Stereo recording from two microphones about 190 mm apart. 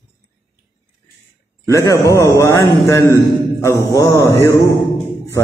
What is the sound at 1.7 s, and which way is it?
A man's voice, 15° left (ahead or behind).